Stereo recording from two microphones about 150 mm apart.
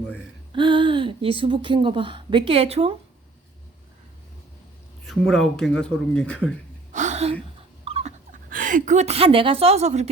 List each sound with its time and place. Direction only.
0.5 s a woman's voice: 35° right (ahead or behind)
5.0 s speech: centre (ahead or behind)
6.9 s gasp: 50° right (ahead or behind)
7.9 s dog: 40° right (ahead or behind)
8.3 s a woman's voice: 65° right (ahead or behind); by 10.1 s 45° right (ahead or behind)